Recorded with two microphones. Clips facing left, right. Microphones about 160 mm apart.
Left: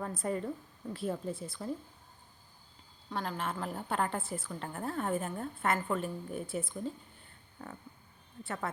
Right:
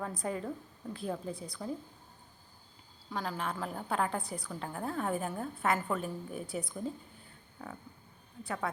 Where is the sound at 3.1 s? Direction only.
Centre (ahead or behind).